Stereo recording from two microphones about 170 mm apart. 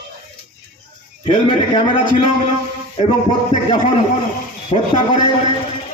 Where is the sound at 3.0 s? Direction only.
35° left (ahead or behind).